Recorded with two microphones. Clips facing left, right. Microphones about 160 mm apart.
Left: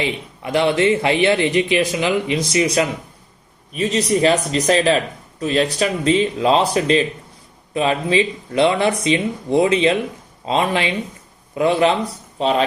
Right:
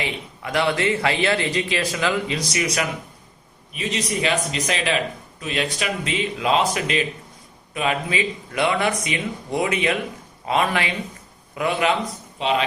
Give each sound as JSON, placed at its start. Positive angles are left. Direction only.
{"t": 0.0, "sound": "speech", "side_deg": 25}
{"t": 3.7, "sound": "speech", "side_deg": 40}